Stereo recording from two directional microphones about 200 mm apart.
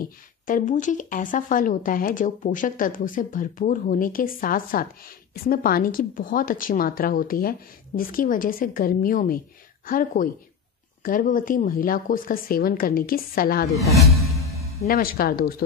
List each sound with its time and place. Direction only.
0.5 s a woman's voice: 40° left (ahead or behind)
14.9 s a woman's voice: 50° left (ahead or behind)